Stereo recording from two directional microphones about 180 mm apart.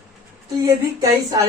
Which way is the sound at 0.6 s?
20° right (ahead or behind).